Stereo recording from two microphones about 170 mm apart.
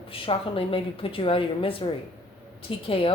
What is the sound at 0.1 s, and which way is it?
A woman's voice, 35° left (ahead or behind).